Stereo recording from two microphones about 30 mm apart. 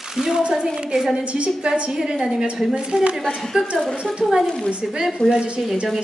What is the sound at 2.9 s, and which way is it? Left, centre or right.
Speech, right.